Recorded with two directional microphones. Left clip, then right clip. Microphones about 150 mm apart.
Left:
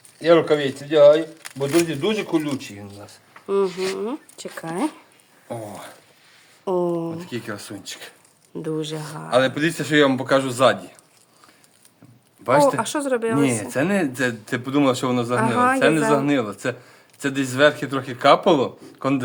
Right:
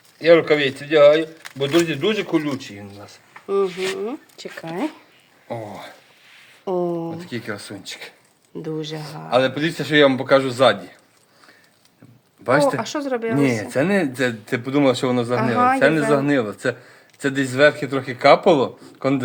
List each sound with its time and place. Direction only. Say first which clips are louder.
0.3 s speech: right 2 dB; 60° right (ahead or behind)
1.4 s speech: right 2 dB; 5° left (ahead or behind)
1.9 s a man's voice: right 2 dB; 15° right (ahead or behind)
3.4 s speech: right 1 dB; 10° left (ahead or behind)
5.5 s speech: right 2 dB; 30° right (ahead or behind)
6.7 s speech: left 1 dB; 10° left (ahead or behind)
7.1 s speech: right 1 dB; 40° right (ahead or behind)
8.5 s speech: left 1 dB; 10° left (ahead or behind)
9.3 s speech: even; 20° right (ahead or behind)
12.6 s speech: left 1 dB; 10° left (ahead or behind)
13.3 s speech: right 1 dB; 35° right (ahead or behind)
15.4 s speech: right 1 dB; 10° left (ahead or behind)
15.8 s speech: right 1 dB; 30° right (ahead or behind)